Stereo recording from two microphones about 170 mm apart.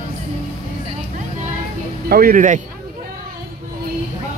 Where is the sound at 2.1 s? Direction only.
60° right (ahead or behind).